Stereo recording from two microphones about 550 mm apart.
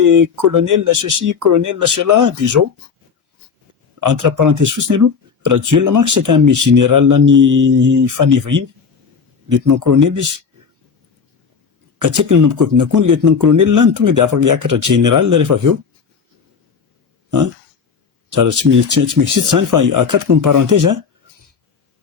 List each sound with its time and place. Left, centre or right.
0.0 s speech: right
4.0 s speech: right
11.9 s speech: right
18.3 s speech: right